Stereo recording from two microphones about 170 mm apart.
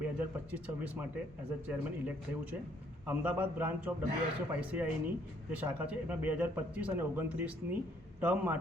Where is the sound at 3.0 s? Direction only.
10° right (ahead or behind).